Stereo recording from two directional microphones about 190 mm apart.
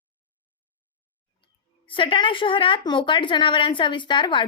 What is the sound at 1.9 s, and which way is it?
A woman's voice, 25° left (ahead or behind).